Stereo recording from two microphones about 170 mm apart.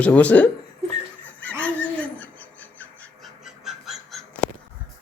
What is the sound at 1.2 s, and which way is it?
Owl, 10° left (ahead or behind).